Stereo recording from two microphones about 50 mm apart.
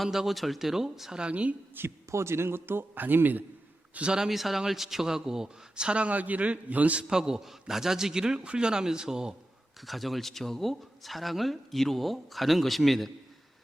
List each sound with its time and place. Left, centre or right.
0.0 s speech: centre
1.2 s a woman's voice: right
2.0 s a man's voice: right
4.0 s a woman's voice: right
4.3 s a man's voice: centre; by 7.0 s right
7.1 s a man's voice: centre
9.8 s speech: centre